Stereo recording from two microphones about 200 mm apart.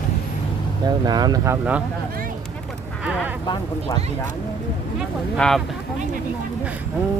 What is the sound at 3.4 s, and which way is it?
Speech, 20° left (ahead or behind).